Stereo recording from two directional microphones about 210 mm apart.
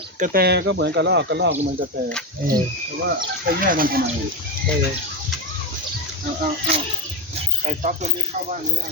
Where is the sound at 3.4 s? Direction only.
40° right (ahead or behind).